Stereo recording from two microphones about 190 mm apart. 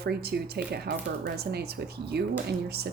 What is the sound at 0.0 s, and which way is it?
Speech, 55° right (ahead or behind).